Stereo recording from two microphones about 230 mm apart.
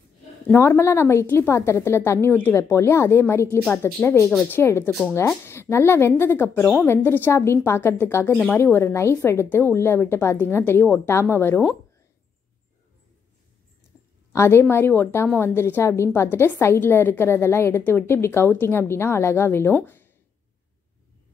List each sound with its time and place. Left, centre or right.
0.5 s speech: centre
14.3 s speech: centre